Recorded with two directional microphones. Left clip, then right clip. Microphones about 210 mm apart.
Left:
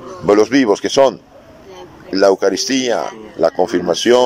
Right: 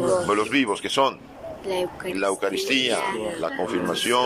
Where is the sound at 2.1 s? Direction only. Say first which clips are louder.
Left 13 dB; 35° left (ahead or behind).